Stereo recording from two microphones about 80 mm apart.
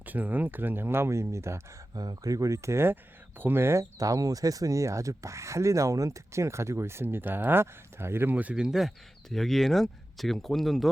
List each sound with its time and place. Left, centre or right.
0.0 s speech: right
2.0 s speech: right; by 8.6 s centre
8.6 s speech: centre